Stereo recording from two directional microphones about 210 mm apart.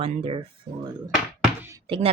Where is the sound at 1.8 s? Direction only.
25° right (ahead or behind).